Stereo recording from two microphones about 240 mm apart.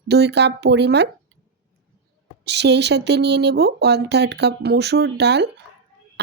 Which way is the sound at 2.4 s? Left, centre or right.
Right.